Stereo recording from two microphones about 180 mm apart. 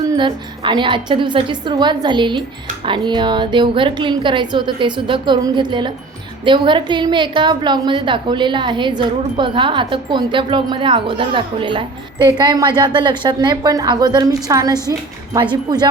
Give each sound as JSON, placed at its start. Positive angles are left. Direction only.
{"t": 0.0, "sound": "a woman's voice", "side_deg": -25}